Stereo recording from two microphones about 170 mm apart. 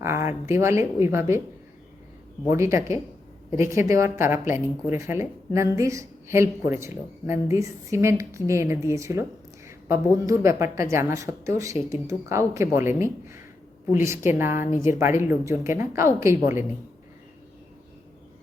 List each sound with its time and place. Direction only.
0.0 s a woman's voice: 15° right (ahead or behind)
2.5 s a woman's voice: 15° right (ahead or behind)